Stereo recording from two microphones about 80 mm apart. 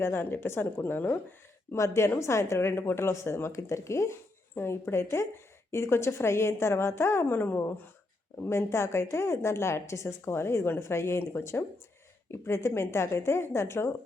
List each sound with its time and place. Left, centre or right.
0.0 s speech: left
1.7 s a woman's voice: left